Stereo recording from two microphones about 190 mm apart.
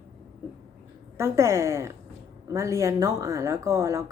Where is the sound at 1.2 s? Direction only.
15° right (ahead or behind).